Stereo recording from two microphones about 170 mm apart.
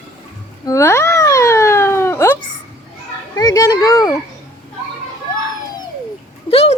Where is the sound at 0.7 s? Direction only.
15° left (ahead or behind).